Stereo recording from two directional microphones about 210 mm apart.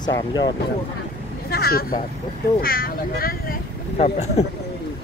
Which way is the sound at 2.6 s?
45° left (ahead or behind).